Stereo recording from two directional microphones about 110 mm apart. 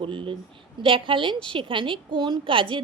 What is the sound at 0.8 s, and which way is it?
A woman's voice, 50° right (ahead or behind).